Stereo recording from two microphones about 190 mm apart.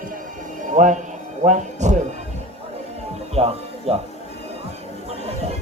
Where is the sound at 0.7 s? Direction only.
40° right (ahead or behind).